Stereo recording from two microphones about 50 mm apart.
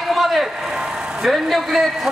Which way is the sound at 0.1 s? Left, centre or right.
Centre.